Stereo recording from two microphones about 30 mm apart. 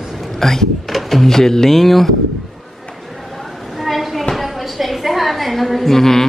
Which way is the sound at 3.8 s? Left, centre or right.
Centre.